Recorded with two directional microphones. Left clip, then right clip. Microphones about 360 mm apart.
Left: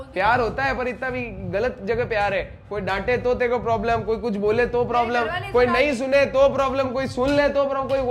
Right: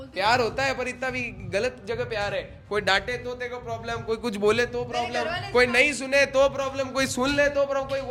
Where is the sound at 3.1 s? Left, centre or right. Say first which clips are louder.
Left 11 dB; left.